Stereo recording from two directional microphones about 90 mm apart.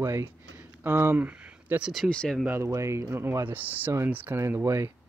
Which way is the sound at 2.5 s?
30° right (ahead or behind).